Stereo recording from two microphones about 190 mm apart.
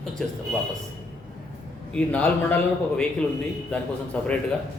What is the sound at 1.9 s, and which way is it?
A man's voice, 5° left (ahead or behind).